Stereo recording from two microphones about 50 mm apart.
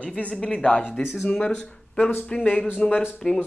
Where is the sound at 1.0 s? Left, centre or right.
Centre.